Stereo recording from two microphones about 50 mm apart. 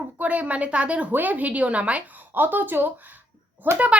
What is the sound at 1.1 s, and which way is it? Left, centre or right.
Speech, right.